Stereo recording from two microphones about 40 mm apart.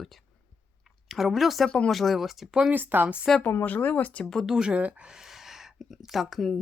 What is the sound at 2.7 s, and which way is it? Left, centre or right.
Speech, right.